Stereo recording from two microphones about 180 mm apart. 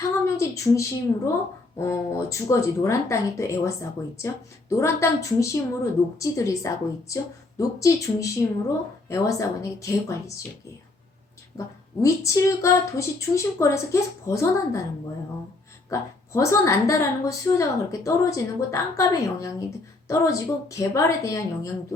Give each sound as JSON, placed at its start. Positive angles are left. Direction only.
{"t": 0.0, "sound": "a sound", "side_deg": 15}
{"t": 1.8, "sound": "a woman's voice", "side_deg": 15}
{"t": 12.0, "sound": "a woman's voice", "side_deg": 15}
{"t": 15.9, "sound": "a woman's voice", "side_deg": 15}